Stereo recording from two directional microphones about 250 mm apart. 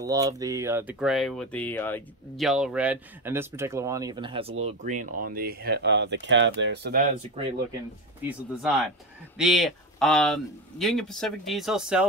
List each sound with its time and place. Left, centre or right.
0.0 s speech: centre; by 7.1 s right
7.4 s speech: right
8.3 s speech: centre